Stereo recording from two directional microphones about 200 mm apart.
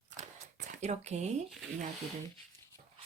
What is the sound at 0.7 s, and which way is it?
Speech, 35° right (ahead or behind).